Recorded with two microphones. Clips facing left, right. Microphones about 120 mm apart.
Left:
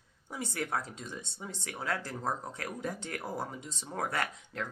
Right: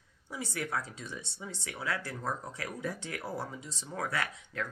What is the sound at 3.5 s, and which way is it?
Speech, 45° left (ahead or behind).